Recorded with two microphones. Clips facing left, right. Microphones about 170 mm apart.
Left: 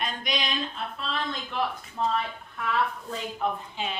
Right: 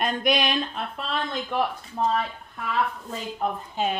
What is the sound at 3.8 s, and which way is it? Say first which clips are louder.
Speech: right 11 dB; 45° right (ahead or behind).